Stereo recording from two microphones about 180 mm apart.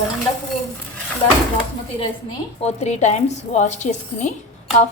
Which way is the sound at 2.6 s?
35° left (ahead or behind).